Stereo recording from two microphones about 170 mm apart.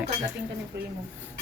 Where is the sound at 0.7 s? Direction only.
80° right.